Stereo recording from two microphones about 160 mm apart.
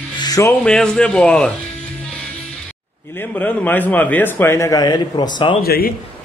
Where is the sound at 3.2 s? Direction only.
10° left (ahead or behind).